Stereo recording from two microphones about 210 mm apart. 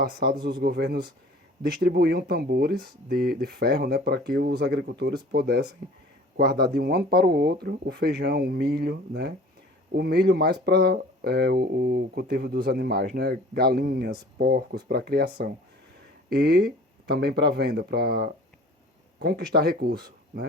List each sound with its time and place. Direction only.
0.0 s speech: 50° right (ahead or behind)